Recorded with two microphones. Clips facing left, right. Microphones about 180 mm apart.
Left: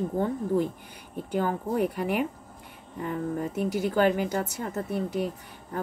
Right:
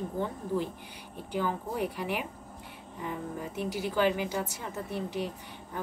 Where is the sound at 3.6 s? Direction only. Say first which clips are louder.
Left 4 dB; 50° left (ahead or behind).